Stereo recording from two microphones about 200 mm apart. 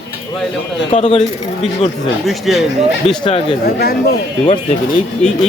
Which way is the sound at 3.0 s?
30° left (ahead or behind).